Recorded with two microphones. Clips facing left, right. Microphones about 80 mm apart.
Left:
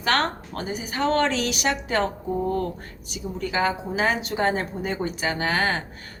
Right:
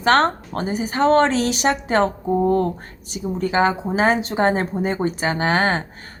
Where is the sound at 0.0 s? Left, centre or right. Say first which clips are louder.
Right 7 dB; right.